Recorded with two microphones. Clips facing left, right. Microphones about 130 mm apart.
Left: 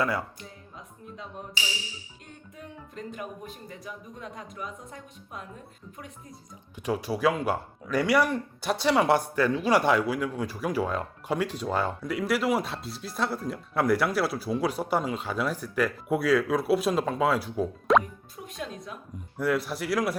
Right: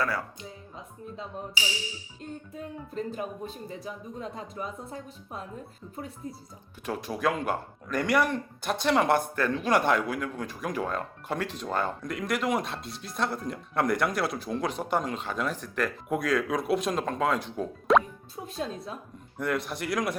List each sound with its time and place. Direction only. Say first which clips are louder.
0.0 s speech: left 2 dB; 20° left (ahead or behind)
2.9 s speech: right 4 dB; 30° right (ahead or behind)
6.8 s speech: left 3 dB; 10° left (ahead or behind)
18.4 s speech: right 3 dB; 30° right (ahead or behind)
19.4 s a man's voice: left 3 dB; 5° left (ahead or behind)